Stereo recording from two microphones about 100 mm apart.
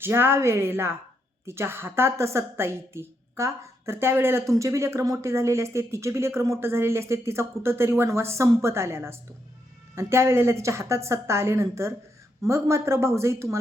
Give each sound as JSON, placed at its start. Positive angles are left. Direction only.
{"t": 0.0, "sound": "a woman's voice", "side_deg": -20}